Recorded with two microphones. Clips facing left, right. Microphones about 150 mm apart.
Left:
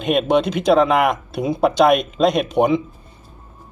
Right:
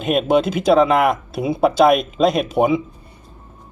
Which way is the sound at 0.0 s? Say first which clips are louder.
Even; centre (ahead or behind).